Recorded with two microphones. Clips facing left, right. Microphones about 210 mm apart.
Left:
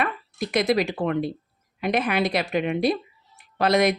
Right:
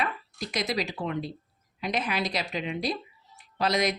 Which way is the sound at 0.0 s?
55° left (ahead or behind).